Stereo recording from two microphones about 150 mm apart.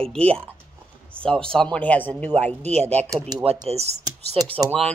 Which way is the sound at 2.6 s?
45° right (ahead or behind).